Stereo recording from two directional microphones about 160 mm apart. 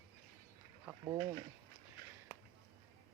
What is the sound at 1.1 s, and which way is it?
Speech, 20° right (ahead or behind).